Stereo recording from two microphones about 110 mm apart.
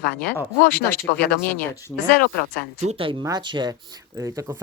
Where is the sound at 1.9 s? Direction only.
Centre (ahead or behind).